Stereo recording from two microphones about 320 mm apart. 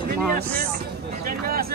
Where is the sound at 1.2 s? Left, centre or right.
Right.